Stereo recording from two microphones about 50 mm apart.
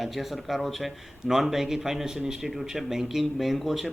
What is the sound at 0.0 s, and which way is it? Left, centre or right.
Speech, centre.